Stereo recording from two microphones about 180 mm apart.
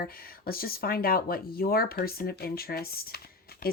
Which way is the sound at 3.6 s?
55° left (ahead or behind).